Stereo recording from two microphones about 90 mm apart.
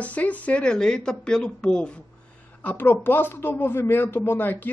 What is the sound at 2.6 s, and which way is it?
Speech, 20° left (ahead or behind).